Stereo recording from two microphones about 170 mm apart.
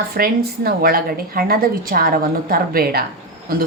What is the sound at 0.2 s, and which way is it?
Speech, 60° right (ahead or behind).